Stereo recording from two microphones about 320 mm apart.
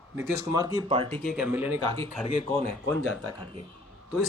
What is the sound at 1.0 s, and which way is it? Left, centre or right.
Speech, centre.